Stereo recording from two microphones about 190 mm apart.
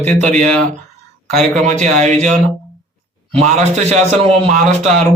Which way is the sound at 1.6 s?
40° right (ahead or behind).